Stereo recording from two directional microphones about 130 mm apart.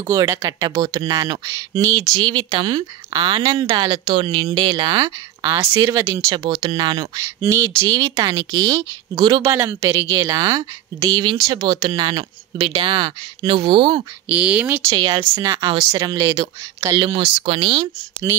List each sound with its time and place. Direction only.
0.0 s a woman's voice: 25° right (ahead or behind)
2.1 s a woman's voice: 35° right (ahead or behind)
5.4 s speech: 25° right (ahead or behind)
6.3 s a woman's voice: 35° right (ahead or behind)
7.2 s a woman's voice: 20° right (ahead or behind); by 9.4 s 35° right (ahead or behind)
9.4 s a woman's voice: 20° right (ahead or behind); by 14.0 s 40° right (ahead or behind)
14.3 s speech: 10° right (ahead or behind)
14.9 s speech: 40° right (ahead or behind)
15.4 s speech: 25° right (ahead or behind)
16.9 s a woman's voice: 40° right (ahead or behind)